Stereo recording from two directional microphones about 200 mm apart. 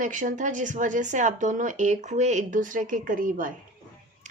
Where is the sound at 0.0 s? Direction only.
40° right (ahead or behind).